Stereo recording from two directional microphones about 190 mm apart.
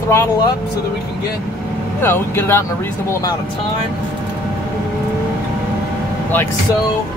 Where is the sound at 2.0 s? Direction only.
10° left (ahead or behind).